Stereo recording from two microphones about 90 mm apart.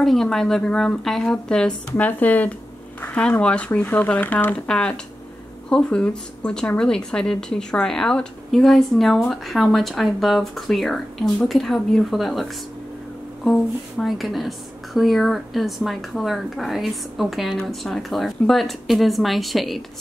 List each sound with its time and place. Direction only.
0.0 s a woman's voice: 5° left (ahead or behind)